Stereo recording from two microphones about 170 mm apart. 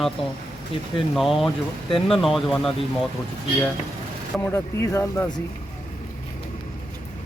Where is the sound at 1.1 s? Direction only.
Centre (ahead or behind).